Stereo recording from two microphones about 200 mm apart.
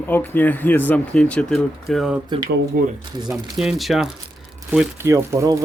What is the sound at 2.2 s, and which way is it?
Speech, 20° right (ahead or behind).